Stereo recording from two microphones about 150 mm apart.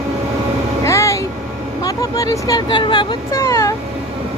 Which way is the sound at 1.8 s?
25° left (ahead or behind).